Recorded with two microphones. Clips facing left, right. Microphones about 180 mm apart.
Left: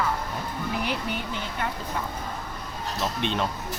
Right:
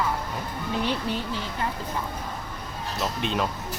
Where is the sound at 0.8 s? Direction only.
30° right (ahead or behind).